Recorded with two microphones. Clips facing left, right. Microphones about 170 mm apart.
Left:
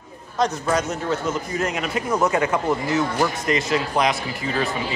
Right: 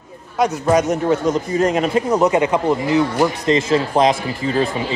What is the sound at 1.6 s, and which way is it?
Speech, 30° right (ahead or behind).